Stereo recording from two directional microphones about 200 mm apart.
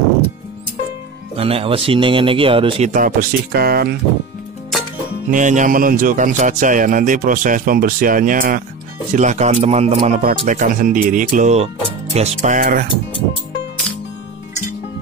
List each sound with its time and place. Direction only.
1.3 s speech: 30° right (ahead or behind)
2.9 s speech: 45° right (ahead or behind)
5.3 s speech: 40° right (ahead or behind)